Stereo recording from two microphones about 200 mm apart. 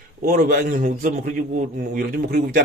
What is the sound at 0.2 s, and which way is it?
Speech, 45° right (ahead or behind).